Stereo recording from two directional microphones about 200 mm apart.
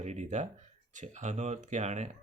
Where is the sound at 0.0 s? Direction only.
35° right (ahead or behind).